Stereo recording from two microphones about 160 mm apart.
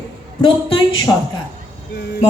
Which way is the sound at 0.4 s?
30° left (ahead or behind).